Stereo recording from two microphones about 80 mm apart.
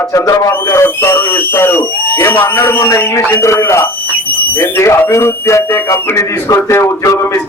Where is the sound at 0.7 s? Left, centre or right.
Left.